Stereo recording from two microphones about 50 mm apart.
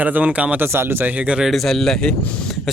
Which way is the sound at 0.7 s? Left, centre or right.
Right.